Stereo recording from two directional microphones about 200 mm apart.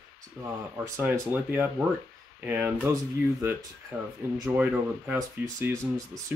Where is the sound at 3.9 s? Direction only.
10° right (ahead or behind).